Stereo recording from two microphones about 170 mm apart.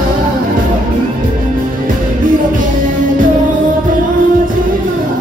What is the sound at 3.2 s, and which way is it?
Music, 50° right (ahead or behind).